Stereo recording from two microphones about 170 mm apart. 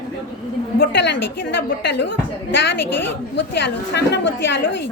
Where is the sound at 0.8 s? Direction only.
90° left.